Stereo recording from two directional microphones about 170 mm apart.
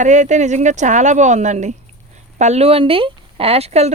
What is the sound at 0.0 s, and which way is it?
Speech, 45° right (ahead or behind).